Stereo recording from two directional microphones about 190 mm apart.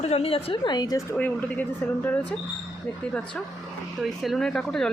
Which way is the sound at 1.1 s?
10° left (ahead or behind).